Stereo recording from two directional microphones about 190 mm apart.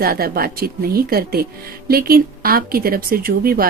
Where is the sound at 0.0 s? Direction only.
50° right (ahead or behind).